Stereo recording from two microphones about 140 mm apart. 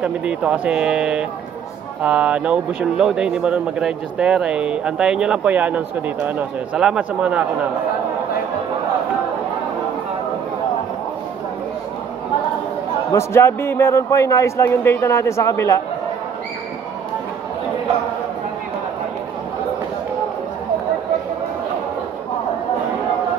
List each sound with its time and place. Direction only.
0.0 s speech: 5° right (ahead or behind)
13.1 s a man's voice: 20° left (ahead or behind)